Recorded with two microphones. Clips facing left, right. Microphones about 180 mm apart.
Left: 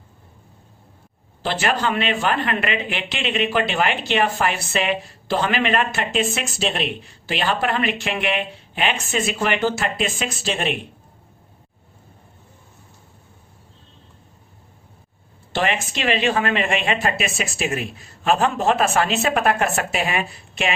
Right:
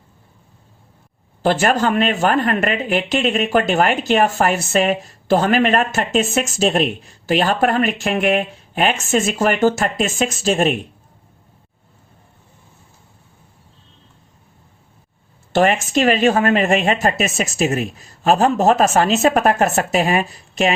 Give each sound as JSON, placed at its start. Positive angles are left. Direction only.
{"t": 1.4, "sound": "speech", "side_deg": -45}
{"t": 15.5, "sound": "speech", "side_deg": -45}